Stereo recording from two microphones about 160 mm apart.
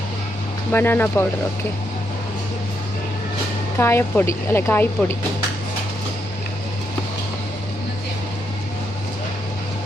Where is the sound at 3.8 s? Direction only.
15° left (ahead or behind).